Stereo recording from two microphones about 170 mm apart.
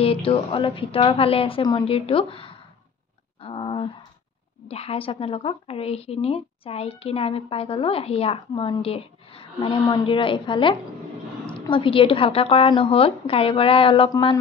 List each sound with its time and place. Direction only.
0.0 s speech: 35° left (ahead or behind)
3.4 s a sound: 30° left (ahead or behind)
4.6 s speech: 35° left (ahead or behind)